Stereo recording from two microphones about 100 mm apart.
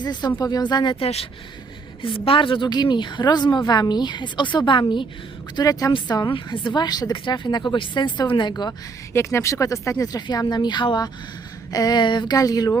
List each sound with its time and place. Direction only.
0.0 s a woman's voice: 45° left (ahead or behind)
0.9 s speech: 80° left
2.0 s a woman's voice: 60° left (ahead or behind)
5.5 s a woman's voice: 40° left (ahead or behind)
9.1 s speech: 30° left (ahead or behind)
10.0 s a woman's voice: 40° left (ahead or behind)